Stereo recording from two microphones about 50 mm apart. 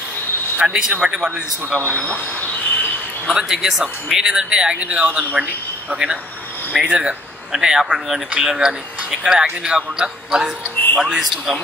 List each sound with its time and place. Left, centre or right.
0.6 s speech: centre
3.3 s speech: centre